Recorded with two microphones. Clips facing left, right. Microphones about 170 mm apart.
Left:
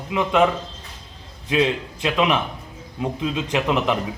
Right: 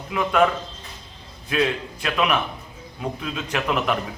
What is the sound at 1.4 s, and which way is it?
A man's voice, 20° left (ahead or behind).